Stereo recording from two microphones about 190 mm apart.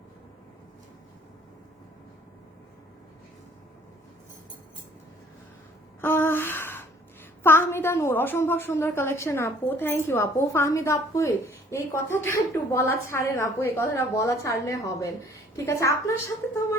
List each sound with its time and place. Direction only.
6.0 s gasp: 10° left (ahead or behind)
7.4 s a woman's voice: 10° left (ahead or behind)